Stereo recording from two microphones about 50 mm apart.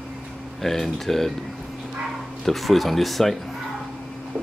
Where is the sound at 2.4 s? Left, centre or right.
Centre.